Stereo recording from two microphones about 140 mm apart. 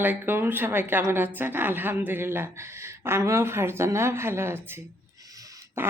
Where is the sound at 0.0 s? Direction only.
15° right (ahead or behind).